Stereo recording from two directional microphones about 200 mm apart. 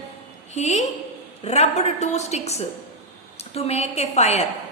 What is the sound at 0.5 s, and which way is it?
A woman's voice, 35° left (ahead or behind).